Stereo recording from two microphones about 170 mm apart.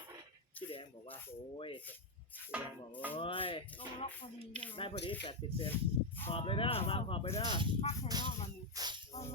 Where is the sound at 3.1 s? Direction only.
30° left (ahead or behind).